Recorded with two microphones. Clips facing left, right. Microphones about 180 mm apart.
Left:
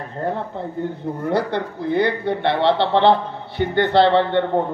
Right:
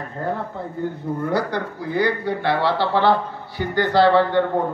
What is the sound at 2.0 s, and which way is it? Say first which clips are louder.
A man's voice: left 1 dB; 25° left (ahead or behind).